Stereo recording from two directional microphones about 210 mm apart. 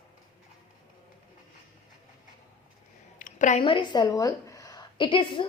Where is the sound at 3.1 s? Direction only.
40° left (ahead or behind).